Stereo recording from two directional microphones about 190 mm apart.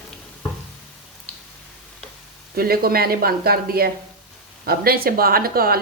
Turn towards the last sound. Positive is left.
turn(degrees=-50)  # may be behind; listen again after turning